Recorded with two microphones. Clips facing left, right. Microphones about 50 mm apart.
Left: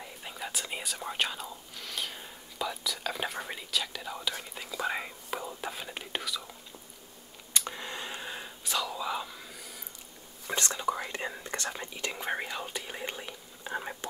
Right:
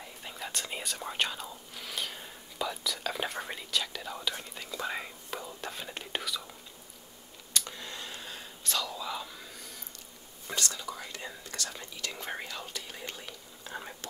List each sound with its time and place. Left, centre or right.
0.2 s speech: centre
7.5 s whispering: left; by 9.8 s centre
10.5 s whispering: left